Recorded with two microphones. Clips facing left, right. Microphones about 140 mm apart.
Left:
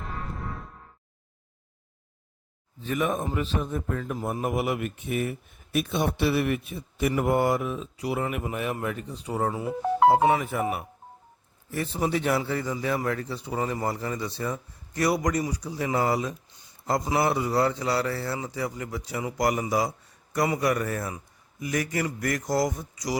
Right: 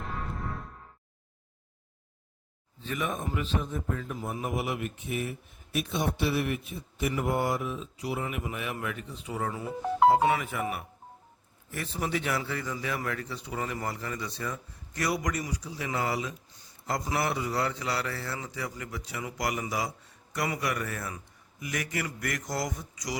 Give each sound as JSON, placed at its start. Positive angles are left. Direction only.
{"t": 0.0, "sound": "music", "side_deg": 0}
{"t": 2.9, "sound": "a man's voice", "side_deg": 45}
{"t": 3.7, "sound": "speech", "side_deg": 60}
{"t": 8.4, "sound": "a man's voice", "side_deg": 40}